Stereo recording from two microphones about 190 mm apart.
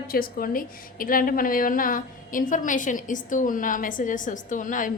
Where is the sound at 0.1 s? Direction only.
50° left (ahead or behind).